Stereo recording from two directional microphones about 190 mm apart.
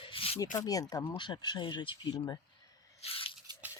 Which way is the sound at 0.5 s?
20° left (ahead or behind).